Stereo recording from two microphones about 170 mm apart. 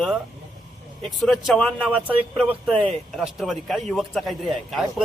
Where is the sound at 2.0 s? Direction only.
10° right (ahead or behind).